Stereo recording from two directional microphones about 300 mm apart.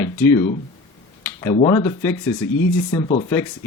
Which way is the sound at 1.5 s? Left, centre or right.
Centre.